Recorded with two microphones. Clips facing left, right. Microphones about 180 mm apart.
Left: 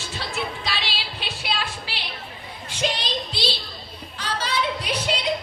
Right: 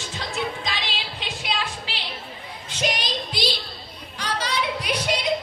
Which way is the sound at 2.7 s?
15° right (ahead or behind).